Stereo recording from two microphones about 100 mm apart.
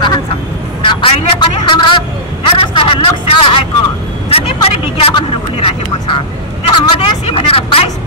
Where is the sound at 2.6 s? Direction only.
60° left (ahead or behind).